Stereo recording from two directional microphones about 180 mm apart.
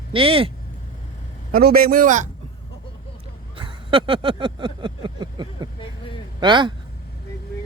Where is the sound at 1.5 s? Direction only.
55° right (ahead or behind).